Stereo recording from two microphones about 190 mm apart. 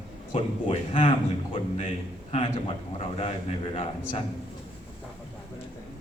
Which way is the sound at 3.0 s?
35° left (ahead or behind).